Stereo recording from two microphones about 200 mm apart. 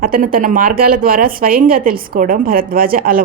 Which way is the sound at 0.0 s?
45° right (ahead or behind).